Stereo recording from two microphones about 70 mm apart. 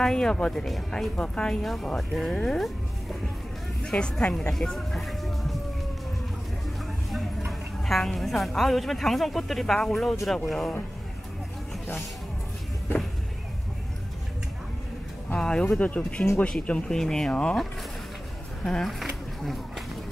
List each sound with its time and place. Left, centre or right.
0.0 s speech: centre
1.1 s a woman's voice: centre
3.8 s speech: centre
7.8 s a woman's voice: centre
15.3 s speech: centre
18.6 s speech: centre
18.9 s a sound: centre